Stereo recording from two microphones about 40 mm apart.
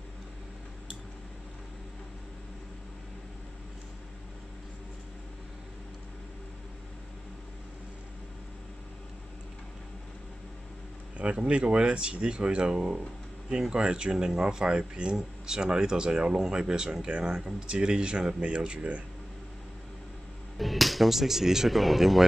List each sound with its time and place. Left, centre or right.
11.1 s speech: right
20.5 s speech: centre